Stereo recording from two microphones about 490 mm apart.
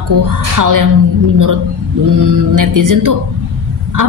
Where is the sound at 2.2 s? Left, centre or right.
Right.